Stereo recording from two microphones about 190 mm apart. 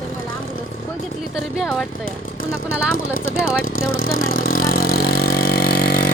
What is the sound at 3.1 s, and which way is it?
Speech, 90° left.